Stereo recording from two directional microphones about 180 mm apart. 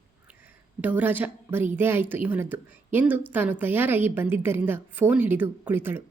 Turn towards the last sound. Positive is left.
turn(degrees=-10)  # may be behind; listen again after turning